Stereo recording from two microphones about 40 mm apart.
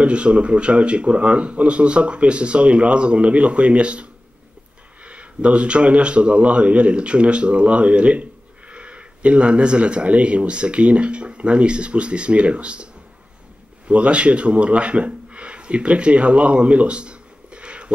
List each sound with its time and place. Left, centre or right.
0.0 s a man's voice: right